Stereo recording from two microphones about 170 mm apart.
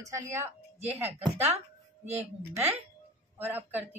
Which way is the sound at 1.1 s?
40° right (ahead or behind).